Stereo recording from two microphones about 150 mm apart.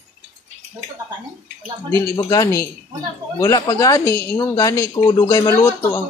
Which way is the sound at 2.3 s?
25° left (ahead or behind).